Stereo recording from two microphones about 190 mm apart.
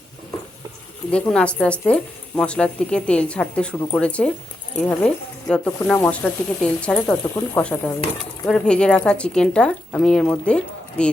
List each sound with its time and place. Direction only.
1.1 s a woman's voice: 5° left (ahead or behind)